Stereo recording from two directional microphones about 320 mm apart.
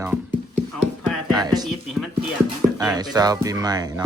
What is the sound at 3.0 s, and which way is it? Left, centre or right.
A child's voice, centre.